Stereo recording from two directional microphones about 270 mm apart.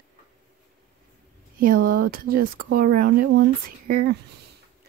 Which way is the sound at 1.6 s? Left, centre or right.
Right.